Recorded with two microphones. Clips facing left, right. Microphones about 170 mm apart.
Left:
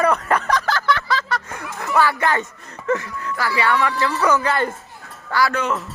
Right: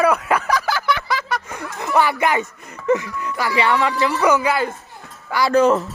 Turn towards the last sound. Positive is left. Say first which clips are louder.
# right 9 dB
turn(degrees=-35)  # may be behind; listen again after turning